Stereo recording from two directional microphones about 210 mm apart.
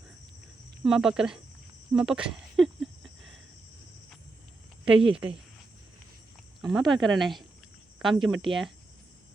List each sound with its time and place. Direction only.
0.9 s speech: centre (ahead or behind)
1.9 s cricket: 5° right (ahead or behind)
4.9 s speech: 25° right (ahead or behind)
6.6 s speech: centre (ahead or behind)